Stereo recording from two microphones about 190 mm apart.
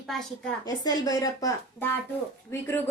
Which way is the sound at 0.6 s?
20° left (ahead or behind).